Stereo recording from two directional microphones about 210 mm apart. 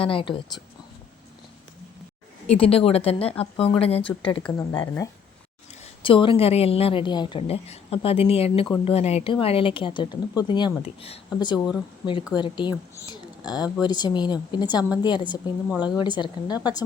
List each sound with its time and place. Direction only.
0.0 s a woman's voice: 25° left (ahead or behind)
2.5 s a woman's voice: 30° left (ahead or behind)
13.4 s speech: 5° right (ahead or behind)
13.8 s a woman's voice: 20° left (ahead or behind)
15.7 s speech: 5° right (ahead or behind)
16.0 s a woman's voice: 20° left (ahead or behind)